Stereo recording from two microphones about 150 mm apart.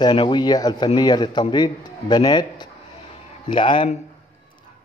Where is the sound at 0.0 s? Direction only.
35° left (ahead or behind).